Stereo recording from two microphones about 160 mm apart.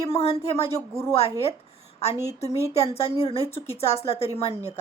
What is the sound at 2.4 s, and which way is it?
A woman's voice, 40° left (ahead or behind).